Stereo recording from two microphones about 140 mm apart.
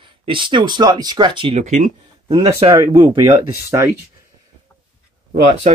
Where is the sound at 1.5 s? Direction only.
60° right (ahead or behind).